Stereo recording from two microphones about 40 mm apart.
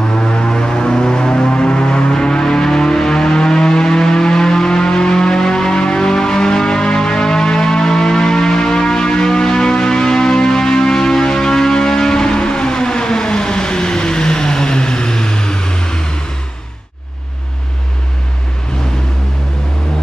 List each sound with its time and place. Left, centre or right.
0.1 s music: left